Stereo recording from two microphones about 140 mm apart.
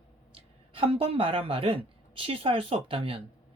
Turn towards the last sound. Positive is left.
turn(degrees=-40)  # may be behind; listen again after turning